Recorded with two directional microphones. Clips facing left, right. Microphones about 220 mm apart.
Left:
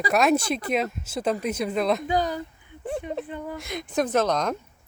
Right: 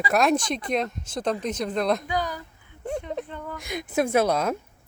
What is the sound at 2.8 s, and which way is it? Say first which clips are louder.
Speech: even; 5° left (ahead or behind).